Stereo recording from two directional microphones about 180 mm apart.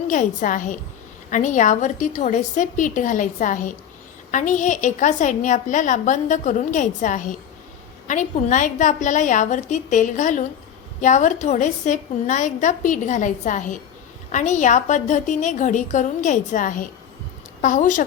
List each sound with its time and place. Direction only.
0.1 s a woman's voice: 45° left (ahead or behind)